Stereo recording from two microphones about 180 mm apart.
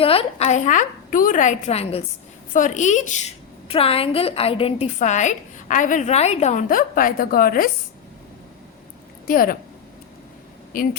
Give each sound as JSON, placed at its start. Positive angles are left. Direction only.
{"t": 0.0, "sound": "a woman's voice", "side_deg": 30}
{"t": 2.5, "sound": "a woman's voice", "side_deg": 45}
{"t": 9.2, "sound": "a woman's voice", "side_deg": 50}
{"t": 10.7, "sound": "a woman's voice", "side_deg": 50}